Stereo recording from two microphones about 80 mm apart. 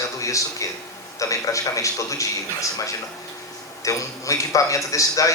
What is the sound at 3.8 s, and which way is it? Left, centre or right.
A man's voice, left.